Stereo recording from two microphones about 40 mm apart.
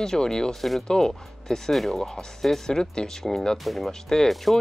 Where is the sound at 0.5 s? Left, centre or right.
Centre.